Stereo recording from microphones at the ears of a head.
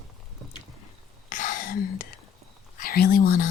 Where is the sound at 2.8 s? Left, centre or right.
Left.